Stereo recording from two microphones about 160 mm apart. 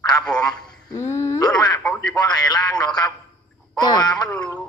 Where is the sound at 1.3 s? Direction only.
25° left (ahead or behind).